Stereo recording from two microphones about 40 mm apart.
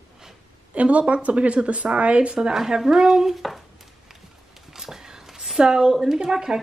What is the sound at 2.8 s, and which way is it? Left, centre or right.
Speech, centre.